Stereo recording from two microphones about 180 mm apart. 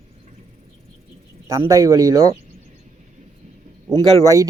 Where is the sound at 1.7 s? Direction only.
15° right (ahead or behind).